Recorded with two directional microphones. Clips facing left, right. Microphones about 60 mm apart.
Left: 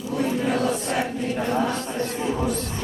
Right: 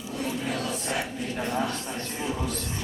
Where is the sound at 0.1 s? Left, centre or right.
Left.